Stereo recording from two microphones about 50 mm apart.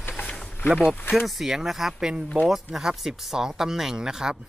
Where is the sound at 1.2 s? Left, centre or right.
Centre.